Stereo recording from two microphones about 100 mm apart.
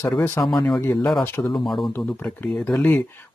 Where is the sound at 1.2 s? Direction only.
25° left (ahead or behind).